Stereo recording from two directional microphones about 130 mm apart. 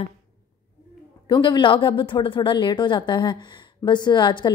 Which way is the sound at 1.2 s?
35° left (ahead or behind).